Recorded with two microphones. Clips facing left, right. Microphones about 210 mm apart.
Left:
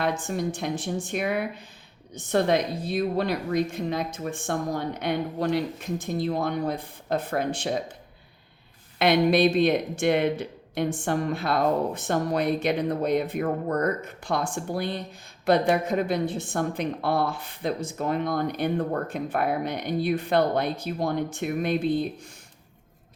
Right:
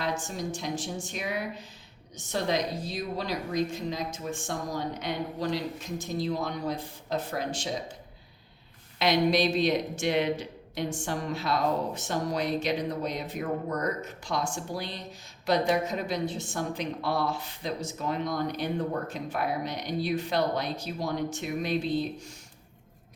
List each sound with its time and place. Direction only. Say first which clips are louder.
0.0 s a woman's voice: left 5 dB; 60° left (ahead or behind)
9.0 s a woman's voice: left 4 dB; 55° left (ahead or behind)